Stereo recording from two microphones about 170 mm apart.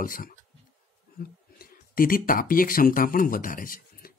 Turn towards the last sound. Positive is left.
turn(degrees=55)  # may be behind; listen again after turning